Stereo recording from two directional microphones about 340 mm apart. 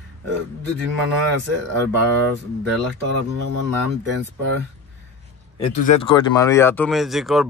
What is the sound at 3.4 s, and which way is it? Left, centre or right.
Speech, right.